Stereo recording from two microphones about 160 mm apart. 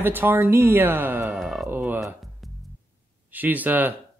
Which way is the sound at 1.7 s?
10° right (ahead or behind).